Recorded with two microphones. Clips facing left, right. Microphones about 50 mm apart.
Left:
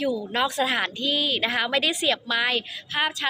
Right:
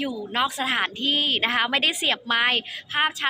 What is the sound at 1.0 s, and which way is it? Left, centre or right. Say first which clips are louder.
Speech: right 1 dB; right.